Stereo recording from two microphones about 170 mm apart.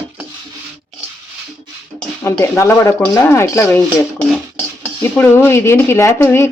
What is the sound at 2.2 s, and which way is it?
Speech, 15° left (ahead or behind).